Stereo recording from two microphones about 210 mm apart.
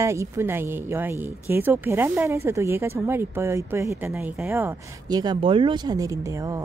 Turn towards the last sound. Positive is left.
turn(degrees=-15)  # may be behind; listen again after turning